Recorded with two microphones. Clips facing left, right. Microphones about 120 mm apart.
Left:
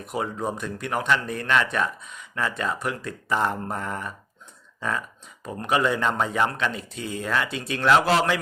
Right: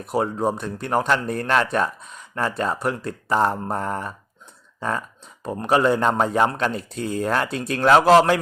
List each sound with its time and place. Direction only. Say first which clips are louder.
0.0 s speech: right 6 dB; 35° right (ahead or behind)
4.8 s a sound: right 3 dB; 35° right (ahead or behind)
5.6 s speech: right 4 dB; 35° right (ahead or behind)